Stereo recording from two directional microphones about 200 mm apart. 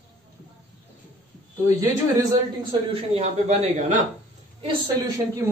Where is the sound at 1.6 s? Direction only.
20° right (ahead or behind).